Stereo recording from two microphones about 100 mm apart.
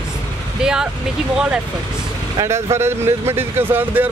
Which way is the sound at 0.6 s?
5° right (ahead or behind).